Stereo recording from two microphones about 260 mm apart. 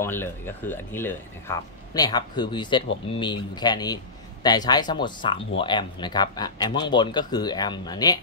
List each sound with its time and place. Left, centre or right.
0.0 s speech: centre